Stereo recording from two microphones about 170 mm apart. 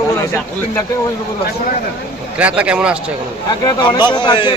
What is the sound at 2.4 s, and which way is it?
Speech, 5° right (ahead or behind).